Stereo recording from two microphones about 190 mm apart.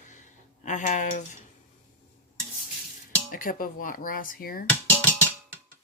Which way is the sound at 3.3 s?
45° left (ahead or behind).